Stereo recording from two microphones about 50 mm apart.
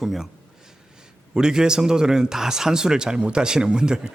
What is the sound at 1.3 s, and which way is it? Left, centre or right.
Speech, centre.